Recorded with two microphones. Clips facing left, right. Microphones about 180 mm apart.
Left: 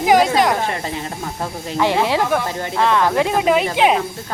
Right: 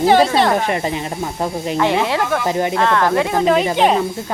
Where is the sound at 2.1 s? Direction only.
15° left (ahead or behind).